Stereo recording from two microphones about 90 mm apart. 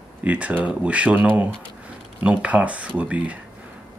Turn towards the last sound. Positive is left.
turn(degrees=-15)  # may be behind; listen again after turning